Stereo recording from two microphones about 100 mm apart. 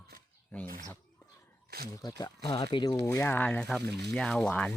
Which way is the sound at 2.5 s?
60° left (ahead or behind).